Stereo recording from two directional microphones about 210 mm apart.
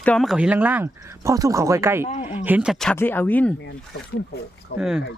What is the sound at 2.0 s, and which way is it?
Speech, 30° left (ahead or behind).